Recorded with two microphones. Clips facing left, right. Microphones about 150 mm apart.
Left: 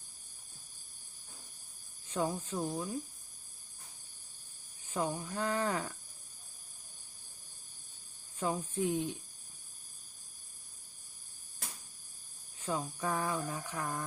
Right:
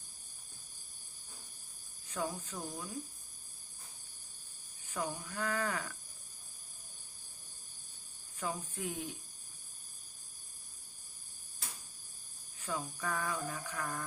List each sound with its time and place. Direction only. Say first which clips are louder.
2.0 s speech: left 4 dB; 25° left (ahead or behind)
4.9 s speech: left 4 dB; 25° left (ahead or behind)
8.4 s speech: left 6 dB; 30° left (ahead or behind)
12.5 s speech: left 4 dB; 25° left (ahead or behind)